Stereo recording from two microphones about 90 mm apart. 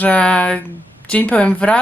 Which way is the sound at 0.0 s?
15° left (ahead or behind).